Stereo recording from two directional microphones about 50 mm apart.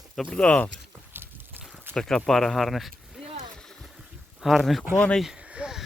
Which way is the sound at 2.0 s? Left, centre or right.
Centre.